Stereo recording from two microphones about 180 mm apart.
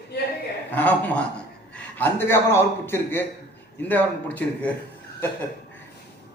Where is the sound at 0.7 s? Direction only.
10° left (ahead or behind).